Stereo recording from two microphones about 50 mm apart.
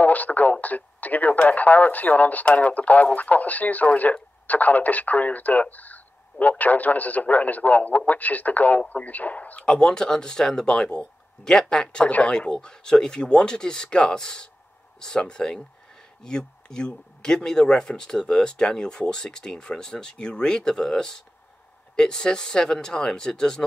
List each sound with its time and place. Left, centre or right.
0.0 s speech: left
9.7 s speech: centre